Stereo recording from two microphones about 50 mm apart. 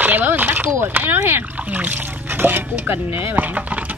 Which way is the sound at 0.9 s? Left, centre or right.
Right.